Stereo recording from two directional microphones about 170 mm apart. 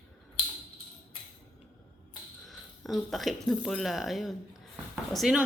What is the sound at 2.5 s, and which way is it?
Speech, centre (ahead or behind).